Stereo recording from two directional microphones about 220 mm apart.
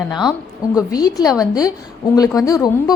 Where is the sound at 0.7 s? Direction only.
15° left (ahead or behind).